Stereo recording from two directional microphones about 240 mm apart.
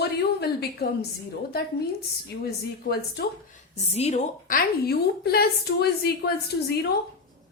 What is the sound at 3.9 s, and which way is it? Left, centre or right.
A woman's voice, left.